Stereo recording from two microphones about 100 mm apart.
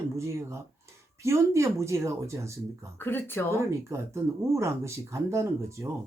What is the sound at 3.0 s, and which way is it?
Speech, 20° left (ahead or behind).